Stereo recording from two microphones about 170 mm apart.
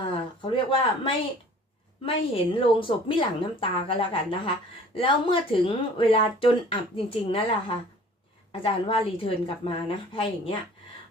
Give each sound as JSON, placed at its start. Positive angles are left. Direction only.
{"t": 0.4, "sound": "speech", "side_deg": 30}